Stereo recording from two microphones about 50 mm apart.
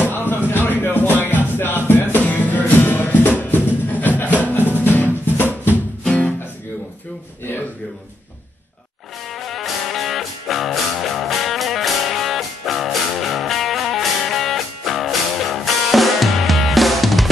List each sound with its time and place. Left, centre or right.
0.0 s a sound: left
0.5 s music: left
6.0 s music: left
9.3 s music: centre